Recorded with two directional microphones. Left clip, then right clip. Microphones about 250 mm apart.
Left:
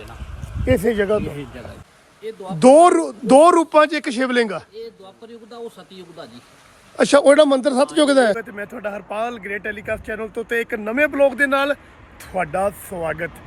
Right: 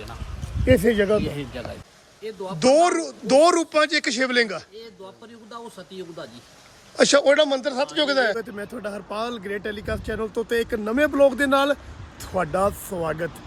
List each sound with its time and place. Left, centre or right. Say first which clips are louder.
0.6 s a man's voice: even; centre
2.6 s a man's voice: left 7 dB; centre
8.4 s a man's voice: left 2 dB; centre
8.8 s speech: left 5 dB; centre